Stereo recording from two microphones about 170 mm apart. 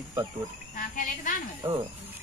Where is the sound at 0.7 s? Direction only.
50° left (ahead or behind).